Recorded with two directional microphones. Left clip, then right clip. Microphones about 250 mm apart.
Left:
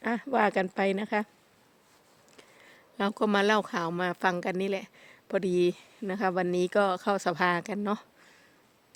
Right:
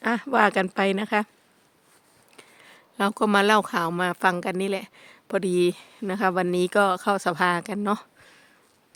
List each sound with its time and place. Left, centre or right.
0.0 s speech: centre
2.3 s speech: centre